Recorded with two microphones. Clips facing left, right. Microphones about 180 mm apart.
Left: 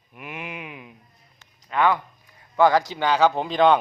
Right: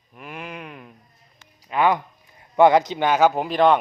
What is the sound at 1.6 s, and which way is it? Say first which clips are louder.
A man's voice: right 1 dB; 15° right (ahead or behind).